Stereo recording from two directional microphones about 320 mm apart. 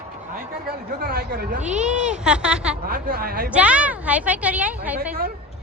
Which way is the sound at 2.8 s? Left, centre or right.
Right.